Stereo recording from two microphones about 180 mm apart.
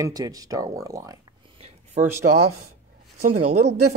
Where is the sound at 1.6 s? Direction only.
35° right (ahead or behind).